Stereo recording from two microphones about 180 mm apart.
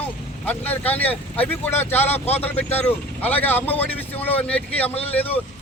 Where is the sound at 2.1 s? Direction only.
35° left (ahead or behind).